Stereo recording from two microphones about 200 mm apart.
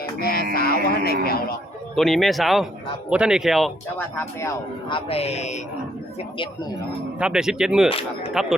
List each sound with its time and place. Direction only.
0.2 s music: 50° left (ahead or behind)
0.5 s speech: 50° left (ahead or behind)
2.0 s speech: centre (ahead or behind)
3.9 s speech: 10° left (ahead or behind)
4.9 s a man's voice: 25° left (ahead or behind)
7.2 s speech: 5° right (ahead or behind)
7.9 s speech: 30° left (ahead or behind)
8.3 s speech: centre (ahead or behind)